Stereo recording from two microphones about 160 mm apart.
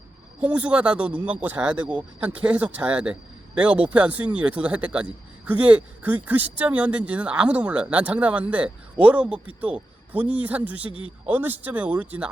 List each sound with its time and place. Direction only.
0.3 s a man's voice: 10° right (ahead or behind)